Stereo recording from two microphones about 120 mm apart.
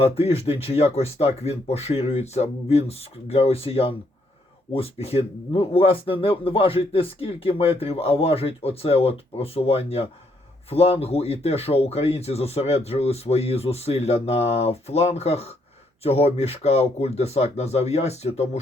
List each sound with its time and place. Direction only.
0.0 s speech: 60° left (ahead or behind)